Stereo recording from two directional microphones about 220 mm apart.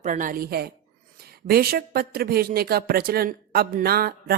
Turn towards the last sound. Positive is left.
turn(degrees=-45)  # may be behind; listen again after turning